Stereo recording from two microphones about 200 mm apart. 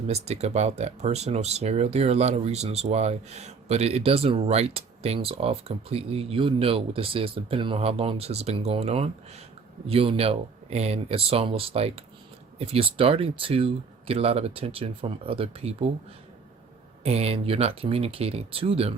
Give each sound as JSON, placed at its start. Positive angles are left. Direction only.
{"t": 0.1, "sound": "speech", "side_deg": -30}
{"t": 17.0, "sound": "speech", "side_deg": -30}